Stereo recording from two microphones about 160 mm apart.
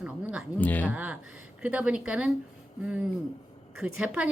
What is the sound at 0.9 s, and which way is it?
A woman's voice, 10° right (ahead or behind).